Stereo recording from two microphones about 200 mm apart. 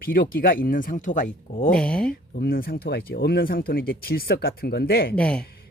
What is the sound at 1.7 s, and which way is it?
Speech, 5° left (ahead or behind).